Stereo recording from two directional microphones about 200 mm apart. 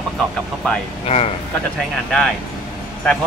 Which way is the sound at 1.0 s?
30° left (ahead or behind).